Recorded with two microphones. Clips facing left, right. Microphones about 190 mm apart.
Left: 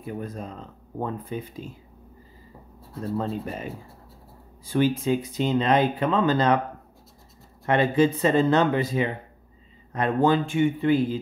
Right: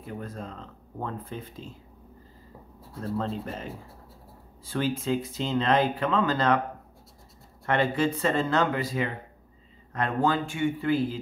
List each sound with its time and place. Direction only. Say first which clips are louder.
0.0 s speech: left 4 dB; 15° left (ahead or behind)
3.2 s speech: left 2 dB; 10° left (ahead or behind)
4.6 s speech: left 5 dB; 15° left (ahead or behind)
7.6 s speech: left 5 dB; 20° left (ahead or behind)